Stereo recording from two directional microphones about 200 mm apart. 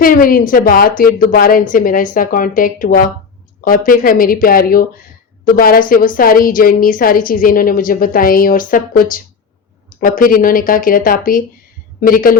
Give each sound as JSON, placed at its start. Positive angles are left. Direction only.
{"t": 0.0, "sound": "a woman's voice", "side_deg": 45}